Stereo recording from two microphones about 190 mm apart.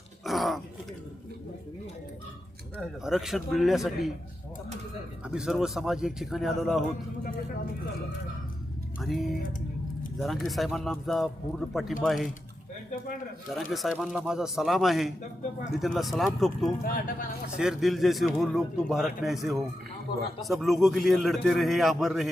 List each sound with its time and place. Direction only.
0.3 s speech: centre (ahead or behind)
2.7 s speech: centre (ahead or behind)
5.2 s speech: 5° right (ahead or behind)
9.0 s speech: centre (ahead or behind)
13.6 s speech: centre (ahead or behind)
16.8 s speech: 50° left (ahead or behind)
17.6 s speech: centre (ahead or behind)